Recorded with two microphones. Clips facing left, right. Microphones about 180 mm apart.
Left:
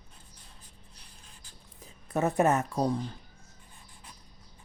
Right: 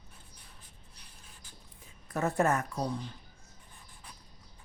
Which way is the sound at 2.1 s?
20° left (ahead or behind).